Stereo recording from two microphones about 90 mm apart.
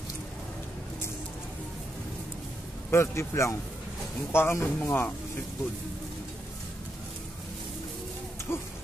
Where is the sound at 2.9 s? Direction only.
30° left (ahead or behind).